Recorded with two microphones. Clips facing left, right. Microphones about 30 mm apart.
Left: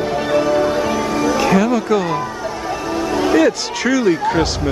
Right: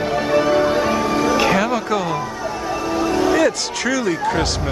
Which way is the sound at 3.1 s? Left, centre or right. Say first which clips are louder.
Left 3 dB; centre.